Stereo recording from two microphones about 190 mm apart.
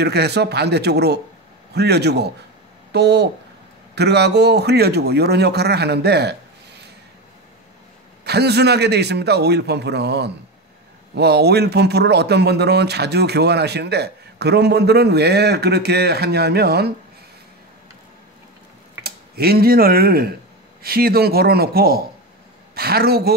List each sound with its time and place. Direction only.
0.0 s speech: 60° right (ahead or behind)
8.2 s speech: 60° right (ahead or behind)
19.0 s a man's voice: 55° right (ahead or behind)